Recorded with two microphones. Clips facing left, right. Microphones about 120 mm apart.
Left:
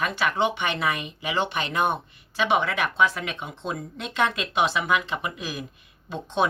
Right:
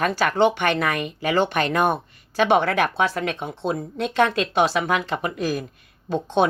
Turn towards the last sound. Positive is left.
turn(degrees=-35)  # may be behind; listen again after turning